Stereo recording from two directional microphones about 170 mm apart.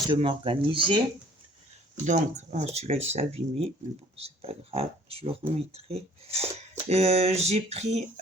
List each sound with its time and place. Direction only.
0.1 s speech: 30° right (ahead or behind)
2.0 s speech: 45° right (ahead or behind)